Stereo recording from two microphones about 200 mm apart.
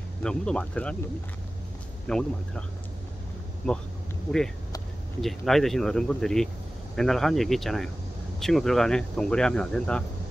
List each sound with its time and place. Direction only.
0.2 s speech: 5° left (ahead or behind)
2.0 s speech: 5° left (ahead or behind)
4.3 s speech: 5° left (ahead or behind)